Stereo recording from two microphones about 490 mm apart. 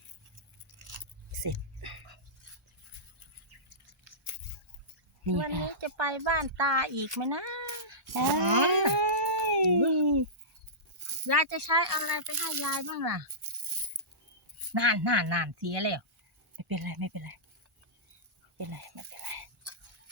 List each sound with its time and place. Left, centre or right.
0.9 s biting: right
5.2 s speech: right
12.2 s speech: right
12.6 s speech: right
14.7 s speech: right
18.5 s a sound: right